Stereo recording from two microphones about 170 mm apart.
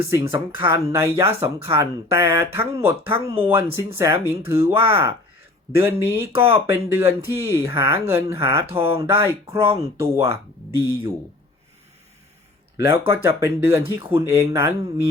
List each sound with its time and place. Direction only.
0.0 s speech: 15° right (ahead or behind)
12.7 s speech: 15° right (ahead or behind)